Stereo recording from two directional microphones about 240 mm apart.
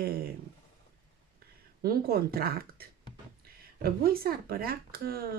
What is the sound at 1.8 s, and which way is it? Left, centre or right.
Speech, right.